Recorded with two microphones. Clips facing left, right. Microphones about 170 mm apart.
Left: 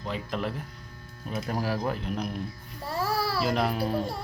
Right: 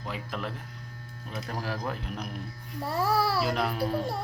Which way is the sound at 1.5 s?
10° left (ahead or behind).